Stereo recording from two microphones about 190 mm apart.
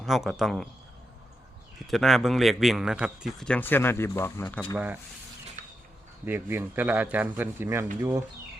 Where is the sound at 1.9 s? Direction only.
Centre (ahead or behind).